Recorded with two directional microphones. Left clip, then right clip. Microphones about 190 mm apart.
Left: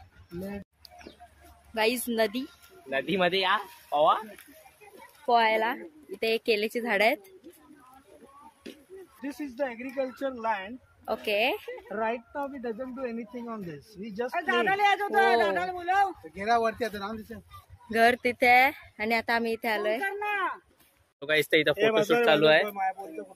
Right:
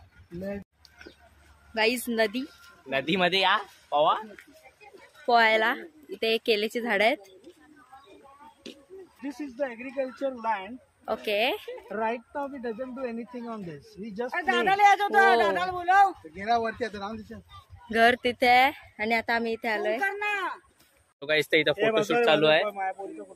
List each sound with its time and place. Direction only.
1.7 s a woman's voice: centre (ahead or behind)
2.9 s speech: 55° right (ahead or behind)
5.2 s speech: 15° right (ahead or behind)
9.6 s speech: 60° left (ahead or behind)
10.3 s speech: 30° left (ahead or behind)
11.1 s speech: 10° right (ahead or behind)
11.9 s speech: 5° left (ahead or behind)
13.6 s speech: 25° left (ahead or behind)
14.3 s speech: 45° right (ahead or behind)
16.3 s speech: 60° left (ahead or behind); by 17.4 s 40° left (ahead or behind)
17.9 s speech: 10° right (ahead or behind)
20.0 s speech: 30° right (ahead or behind)
21.2 s a woman's voice: centre (ahead or behind)
22.7 s speech: 55° left (ahead or behind)